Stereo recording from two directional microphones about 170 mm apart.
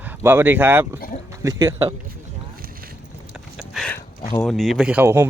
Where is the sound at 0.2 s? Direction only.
15° right (ahead or behind).